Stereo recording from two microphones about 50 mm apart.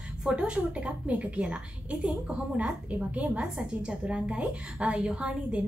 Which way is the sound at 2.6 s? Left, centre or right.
Right.